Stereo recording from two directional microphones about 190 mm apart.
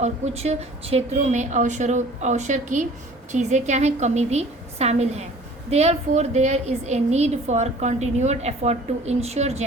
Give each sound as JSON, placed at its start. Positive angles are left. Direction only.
{"t": 0.0, "sound": "a woman's voice", "side_deg": -35}